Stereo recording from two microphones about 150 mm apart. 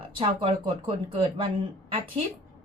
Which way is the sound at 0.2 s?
35° right (ahead or behind).